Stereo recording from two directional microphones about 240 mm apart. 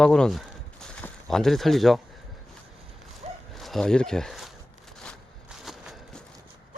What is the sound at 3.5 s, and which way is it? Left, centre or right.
Speech, centre.